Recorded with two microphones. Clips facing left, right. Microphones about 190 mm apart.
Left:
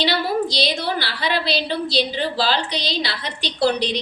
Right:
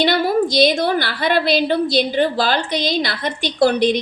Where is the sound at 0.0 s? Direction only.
50° right (ahead or behind).